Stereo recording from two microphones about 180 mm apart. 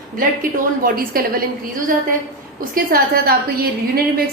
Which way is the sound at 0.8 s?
55° right (ahead or behind).